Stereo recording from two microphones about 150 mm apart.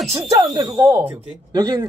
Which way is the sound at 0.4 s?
25° right (ahead or behind).